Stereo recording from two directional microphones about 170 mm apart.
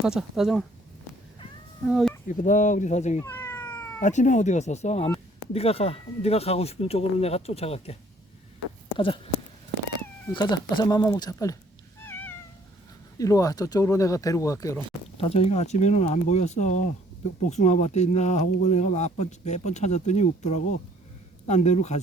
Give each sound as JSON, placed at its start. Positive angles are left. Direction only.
{"t": 0.0, "sound": "speech", "side_deg": -5}
{"t": 1.9, "sound": "speech", "side_deg": 0}
{"t": 2.2, "sound": "speech", "side_deg": 50}
{"t": 3.2, "sound": "cat", "side_deg": 15}
{"t": 4.0, "sound": "speech", "side_deg": 45}
{"t": 9.0, "sound": "speech", "side_deg": 30}
{"t": 10.3, "sound": "speech", "side_deg": 25}
{"t": 12.0, "sound": "cat", "side_deg": 10}
{"t": 13.1, "sound": "speech", "side_deg": 20}
{"t": 15.2, "sound": "speech", "side_deg": 35}